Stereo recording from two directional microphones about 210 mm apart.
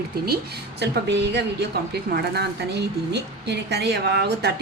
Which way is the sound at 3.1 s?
50° right (ahead or behind).